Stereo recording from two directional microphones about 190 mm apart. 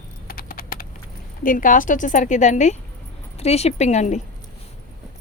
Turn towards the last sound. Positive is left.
turn(degrees=35)  # may be behind; listen again after turning